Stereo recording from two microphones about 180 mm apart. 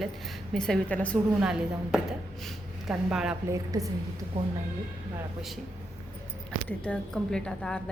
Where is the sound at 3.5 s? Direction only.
20° right (ahead or behind).